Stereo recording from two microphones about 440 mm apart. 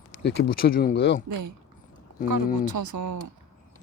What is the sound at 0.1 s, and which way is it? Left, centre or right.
Speech, left.